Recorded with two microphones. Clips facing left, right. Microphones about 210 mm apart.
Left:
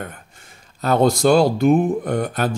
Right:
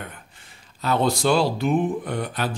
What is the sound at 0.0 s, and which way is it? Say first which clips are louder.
Speech: left 5 dB; 45° left (ahead or behind).